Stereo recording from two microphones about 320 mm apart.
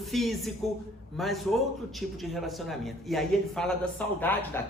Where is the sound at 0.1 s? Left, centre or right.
Centre.